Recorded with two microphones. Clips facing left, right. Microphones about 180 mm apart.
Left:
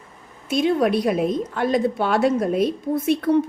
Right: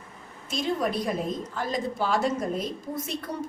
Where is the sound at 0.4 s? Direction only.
65° left (ahead or behind).